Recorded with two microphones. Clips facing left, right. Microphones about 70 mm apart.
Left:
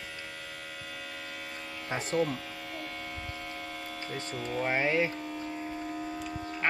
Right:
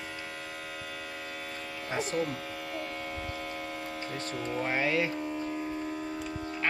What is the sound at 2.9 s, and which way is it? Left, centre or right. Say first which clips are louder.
Hum: right 3 dB; right.